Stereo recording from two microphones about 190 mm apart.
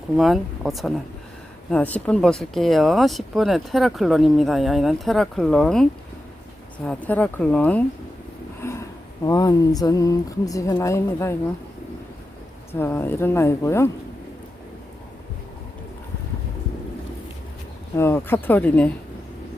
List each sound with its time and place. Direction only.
0.2 s speech: centre (ahead or behind)
8.6 s a sound: 15° left (ahead or behind)
9.2 s speech: 20° left (ahead or behind)
12.8 s speech: 10° left (ahead or behind)
17.9 s speech: 10° left (ahead or behind)